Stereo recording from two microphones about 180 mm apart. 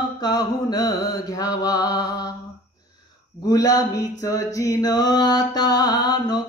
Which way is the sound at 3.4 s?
20° left (ahead or behind).